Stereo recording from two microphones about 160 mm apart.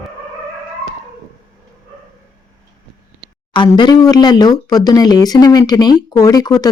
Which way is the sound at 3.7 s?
25° left (ahead or behind).